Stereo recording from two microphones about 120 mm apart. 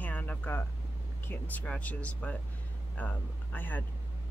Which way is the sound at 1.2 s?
15° left (ahead or behind).